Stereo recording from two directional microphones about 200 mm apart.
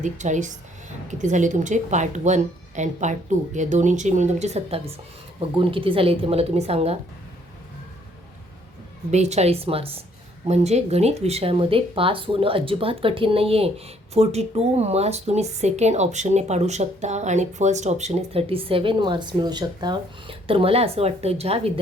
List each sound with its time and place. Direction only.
0.0 s speech: 40° right (ahead or behind)
9.1 s speech: 35° right (ahead or behind)